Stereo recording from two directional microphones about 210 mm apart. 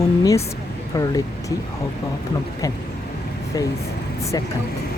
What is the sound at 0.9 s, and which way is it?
Speech, 15° left (ahead or behind).